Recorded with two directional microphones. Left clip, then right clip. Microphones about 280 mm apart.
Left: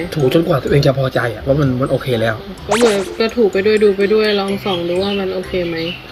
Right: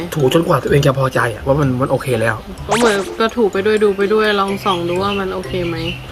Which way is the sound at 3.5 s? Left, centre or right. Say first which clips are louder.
Left 3 dB; centre.